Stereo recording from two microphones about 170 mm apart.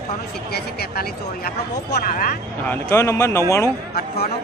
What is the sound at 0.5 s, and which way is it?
Speech, 70° left (ahead or behind).